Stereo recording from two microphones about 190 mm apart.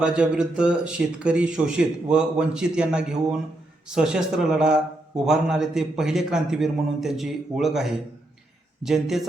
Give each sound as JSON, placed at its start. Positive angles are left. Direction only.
{"t": 0.0, "sound": "a man's voice", "side_deg": -5}